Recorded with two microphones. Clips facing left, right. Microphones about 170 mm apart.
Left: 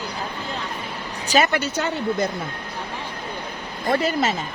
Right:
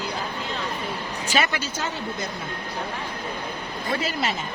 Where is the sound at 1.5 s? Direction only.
60° left (ahead or behind).